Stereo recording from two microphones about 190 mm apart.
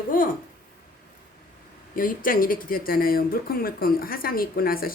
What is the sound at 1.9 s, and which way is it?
Speech, 45° left (ahead or behind).